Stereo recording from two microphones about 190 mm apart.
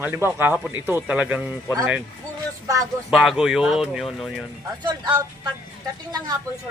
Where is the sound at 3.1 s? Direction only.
Centre (ahead or behind).